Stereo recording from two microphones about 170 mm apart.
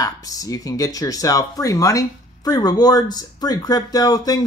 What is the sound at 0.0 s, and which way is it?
Speech, 20° left (ahead or behind).